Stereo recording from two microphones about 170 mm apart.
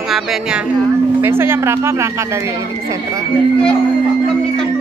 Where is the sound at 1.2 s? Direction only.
15° right (ahead or behind).